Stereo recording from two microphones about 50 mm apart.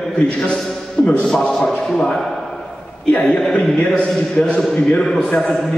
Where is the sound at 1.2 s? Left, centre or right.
Centre.